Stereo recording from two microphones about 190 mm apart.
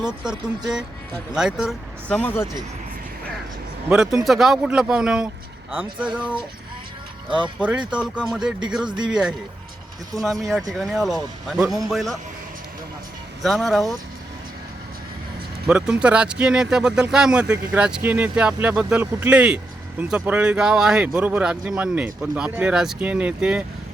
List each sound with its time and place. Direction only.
0.0 s speech: 5° right (ahead or behind)
2.0 s speech: 10° left (ahead or behind)
3.8 s speech: 5° right (ahead or behind)
7.3 s speech: 25° right (ahead or behind)
7.6 s speech: 5° right (ahead or behind)
10.2 s speech: centre (ahead or behind)
13.4 s speech: centre (ahead or behind)
15.6 s speech: 5° right (ahead or behind)